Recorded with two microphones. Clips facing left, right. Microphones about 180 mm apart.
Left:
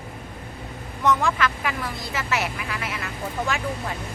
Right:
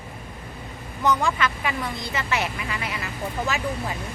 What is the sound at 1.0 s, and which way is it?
Speech, centre (ahead or behind).